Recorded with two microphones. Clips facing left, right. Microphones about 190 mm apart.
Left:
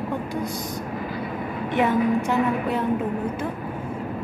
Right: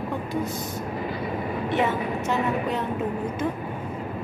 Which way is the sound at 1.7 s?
10° left (ahead or behind).